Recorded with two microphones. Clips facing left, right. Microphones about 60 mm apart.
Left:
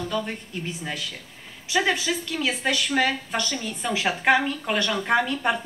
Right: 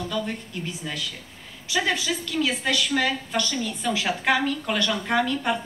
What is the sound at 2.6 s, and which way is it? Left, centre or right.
A woman's voice, left.